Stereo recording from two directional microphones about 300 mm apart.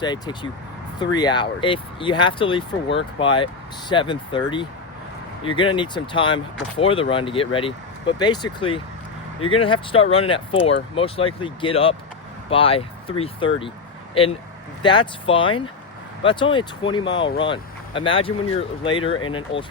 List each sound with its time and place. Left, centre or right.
0.0 s speech: centre